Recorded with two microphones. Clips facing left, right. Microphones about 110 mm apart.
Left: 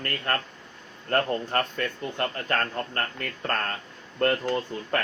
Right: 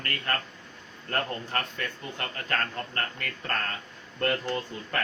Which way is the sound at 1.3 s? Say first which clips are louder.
Left 6 dB; 40° left (ahead or behind).